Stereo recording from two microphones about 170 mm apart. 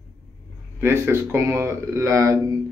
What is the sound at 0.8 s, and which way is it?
Speech, 15° right (ahead or behind).